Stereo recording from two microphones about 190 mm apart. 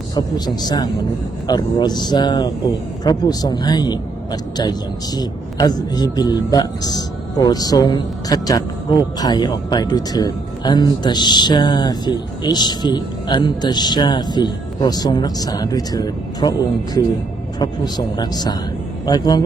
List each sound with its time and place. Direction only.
0.1 s a man's voice: 20° left (ahead or behind)